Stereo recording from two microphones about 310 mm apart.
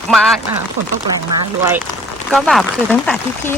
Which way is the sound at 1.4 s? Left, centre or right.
Centre.